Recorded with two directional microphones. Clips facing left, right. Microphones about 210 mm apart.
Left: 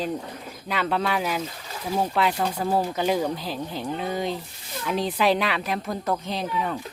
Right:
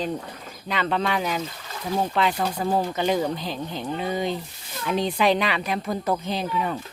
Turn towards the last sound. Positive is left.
turn(degrees=0)  # may be behind; listen again after turning